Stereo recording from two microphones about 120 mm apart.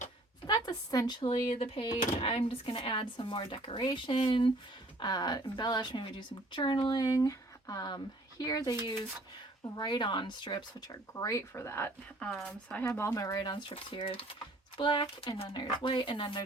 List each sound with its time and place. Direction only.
0.4 s a sound: 35° left (ahead or behind)
1.5 s speech: 55° left (ahead or behind); by 8.7 s 35° left (ahead or behind)
9.7 s speech: 40° left (ahead or behind); by 11.9 s 20° left (ahead or behind)
12.2 s speech: 5° left (ahead or behind)
13.0 s speech: 25° left (ahead or behind); by 16.4 s 45° left (ahead or behind)